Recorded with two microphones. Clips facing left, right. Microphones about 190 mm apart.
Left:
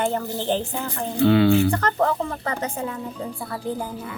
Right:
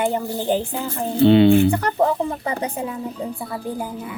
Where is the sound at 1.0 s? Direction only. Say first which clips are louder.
Right 4 dB; 20° right (ahead or behind).